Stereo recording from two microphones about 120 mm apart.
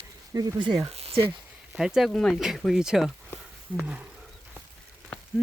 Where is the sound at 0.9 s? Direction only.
55° right (ahead or behind).